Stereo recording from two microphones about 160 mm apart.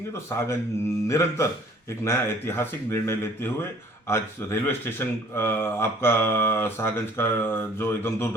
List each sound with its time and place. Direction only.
0.1 s speech: 20° left (ahead or behind)